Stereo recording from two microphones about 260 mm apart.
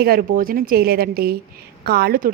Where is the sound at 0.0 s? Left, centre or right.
Right.